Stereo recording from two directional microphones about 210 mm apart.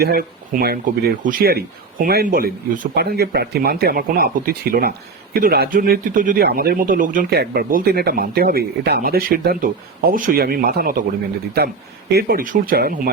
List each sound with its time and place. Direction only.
0.0 s speech: 45° right (ahead or behind)